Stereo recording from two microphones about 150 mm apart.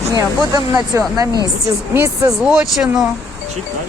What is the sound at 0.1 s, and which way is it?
Speech, 25° right (ahead or behind).